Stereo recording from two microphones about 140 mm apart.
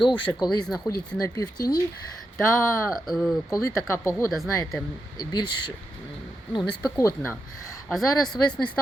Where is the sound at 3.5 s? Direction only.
20° left (ahead or behind).